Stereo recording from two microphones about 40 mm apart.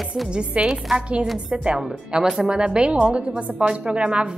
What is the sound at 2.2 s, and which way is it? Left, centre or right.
A woman's voice, centre.